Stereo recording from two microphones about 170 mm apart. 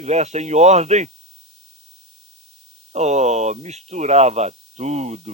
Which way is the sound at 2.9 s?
40° right (ahead or behind).